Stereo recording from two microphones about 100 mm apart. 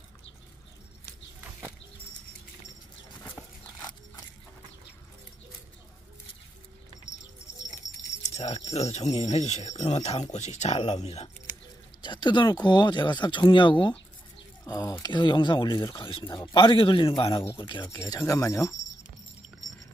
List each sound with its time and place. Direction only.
8.4 s speech: 90° left
12.0 s speech: 50° left (ahead or behind)
14.7 s speech: 35° left (ahead or behind); by 17.5 s 65° left (ahead or behind)
17.6 s speech: 50° left (ahead or behind)
17.9 s speech: 35° left (ahead or behind)